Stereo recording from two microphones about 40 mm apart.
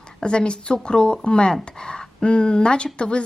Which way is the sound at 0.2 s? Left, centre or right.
Left.